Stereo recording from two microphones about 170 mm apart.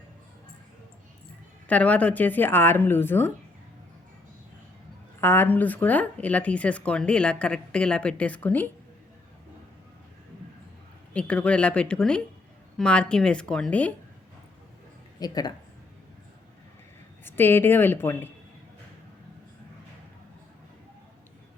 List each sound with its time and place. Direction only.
1.6 s speech: 10° left (ahead or behind)
5.2 s speech: 15° left (ahead or behind)
11.1 s speech: 5° left (ahead or behind)
15.2 s a woman's voice: 20° left (ahead or behind)
17.2 s speech: 15° left (ahead or behind)